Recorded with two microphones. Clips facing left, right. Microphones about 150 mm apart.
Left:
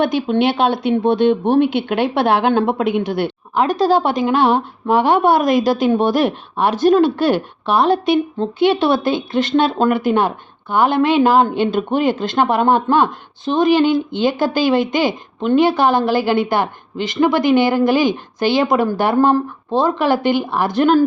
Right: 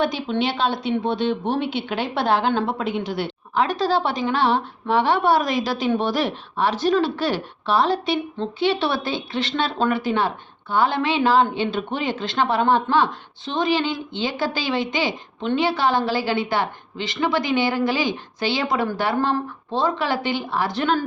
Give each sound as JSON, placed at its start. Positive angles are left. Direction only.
{"t": 0.0, "sound": "speech", "side_deg": 55}